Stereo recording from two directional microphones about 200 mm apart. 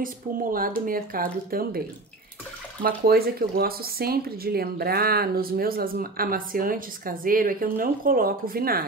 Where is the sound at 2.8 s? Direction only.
50° right (ahead or behind).